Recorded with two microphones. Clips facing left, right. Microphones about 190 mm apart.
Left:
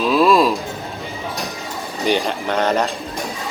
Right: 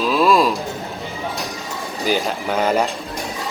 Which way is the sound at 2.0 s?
5° right (ahead or behind).